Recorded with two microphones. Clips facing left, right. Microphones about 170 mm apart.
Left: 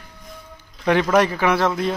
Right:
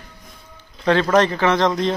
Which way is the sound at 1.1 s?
10° left (ahead or behind).